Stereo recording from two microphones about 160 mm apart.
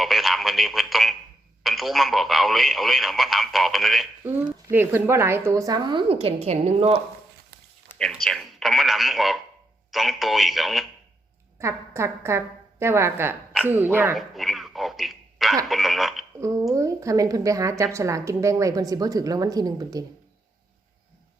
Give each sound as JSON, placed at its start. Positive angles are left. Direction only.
{"t": 0.0, "sound": "speech", "side_deg": 0}
{"t": 4.2, "sound": "a woman's voice", "side_deg": -10}
{"t": 8.1, "sound": "speech", "side_deg": 0}
{"t": 11.6, "sound": "a woman's voice", "side_deg": -15}
{"t": 14.2, "sound": "a sound", "side_deg": 0}
{"t": 15.7, "sound": "speech", "side_deg": 0}
{"t": 16.4, "sound": "a woman's voice", "side_deg": -20}